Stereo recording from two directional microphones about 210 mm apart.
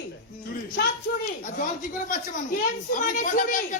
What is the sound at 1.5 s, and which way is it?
A woman's voice, 40° left (ahead or behind).